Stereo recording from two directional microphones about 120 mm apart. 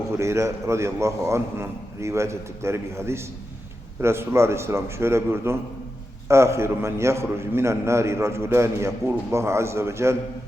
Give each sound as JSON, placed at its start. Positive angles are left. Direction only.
{"t": 0.2, "sound": "a man's voice", "side_deg": -25}